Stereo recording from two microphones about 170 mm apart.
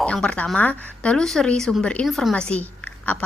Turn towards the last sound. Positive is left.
turn(degrees=10)  # may be behind; listen again after turning